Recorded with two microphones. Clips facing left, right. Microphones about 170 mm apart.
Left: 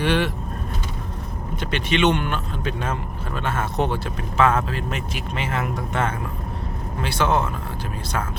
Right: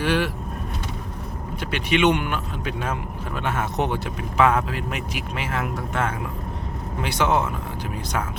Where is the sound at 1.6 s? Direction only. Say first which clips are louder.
Even; 10° right (ahead or behind).